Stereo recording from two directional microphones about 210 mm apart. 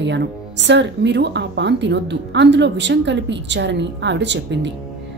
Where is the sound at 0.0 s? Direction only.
55° right (ahead or behind).